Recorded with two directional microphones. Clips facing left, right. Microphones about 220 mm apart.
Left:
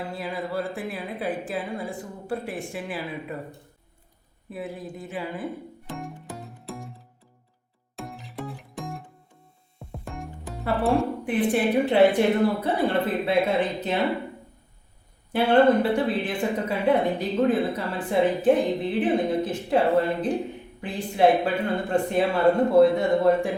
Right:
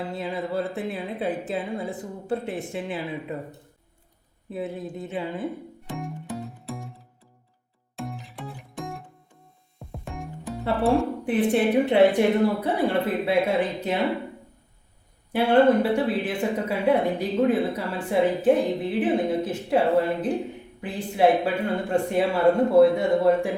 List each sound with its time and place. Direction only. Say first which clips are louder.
0.0 s a woman's voice: right 2 dB; 20° right (ahead or behind)
4.4 s a woman's voice: right 3 dB; 25° right (ahead or behind)
5.8 s music: right 2 dB; centre (ahead or behind)
7.9 s music: right 1 dB; centre (ahead or behind)
11.3 s a woman's voice: right 2 dB; 25° right (ahead or behind); by 14.0 s 10° right (ahead or behind)
15.3 s speech: even; 10° right (ahead or behind)